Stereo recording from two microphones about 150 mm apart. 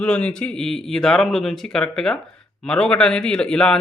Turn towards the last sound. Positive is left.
turn(degrees=5)  # may be behind; listen again after turning